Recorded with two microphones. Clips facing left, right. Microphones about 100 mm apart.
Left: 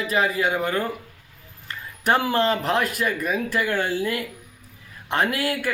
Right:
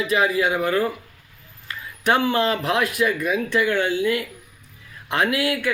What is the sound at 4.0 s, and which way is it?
Speech, 40° left (ahead or behind).